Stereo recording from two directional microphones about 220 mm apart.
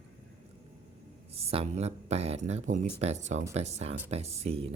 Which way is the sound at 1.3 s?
25° right (ahead or behind).